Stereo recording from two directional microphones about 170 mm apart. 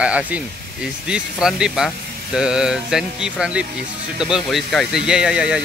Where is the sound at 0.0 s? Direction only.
5° right (ahead or behind).